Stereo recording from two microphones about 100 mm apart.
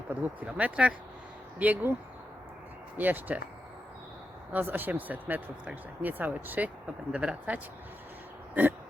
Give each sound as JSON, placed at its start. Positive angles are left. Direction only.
{"t": 0.1, "sound": "speech", "side_deg": -15}
{"t": 3.0, "sound": "speech", "side_deg": -15}
{"t": 4.5, "sound": "speech", "side_deg": -20}